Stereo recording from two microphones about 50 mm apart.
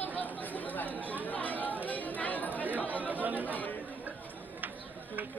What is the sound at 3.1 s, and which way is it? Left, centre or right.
Chatter, right.